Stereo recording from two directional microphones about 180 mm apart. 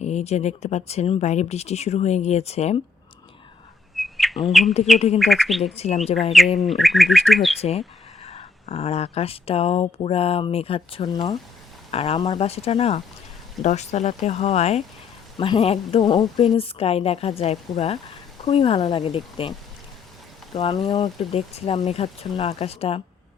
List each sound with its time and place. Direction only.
0.0 s speech: 40° left (ahead or behind)
3.9 s bird: centre (ahead or behind)
4.9 s speech: 35° left (ahead or behind)
5.2 s bird: centre (ahead or behind)
5.7 s speech: 35° left (ahead or behind)
6.6 s bird: centre (ahead or behind)
7.6 s speech: 35° left (ahead or behind)
11.9 s speech: 35° left (ahead or behind)
20.6 s speech: 25° left (ahead or behind)